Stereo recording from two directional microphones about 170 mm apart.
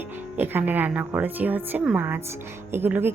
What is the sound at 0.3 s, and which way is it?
Speech, 10° right (ahead or behind).